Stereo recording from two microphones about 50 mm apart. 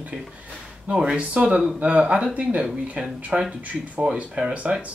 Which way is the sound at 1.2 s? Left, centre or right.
Right.